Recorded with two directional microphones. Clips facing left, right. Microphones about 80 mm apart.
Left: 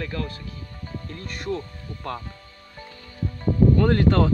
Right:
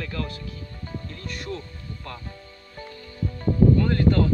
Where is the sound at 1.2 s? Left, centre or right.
Left.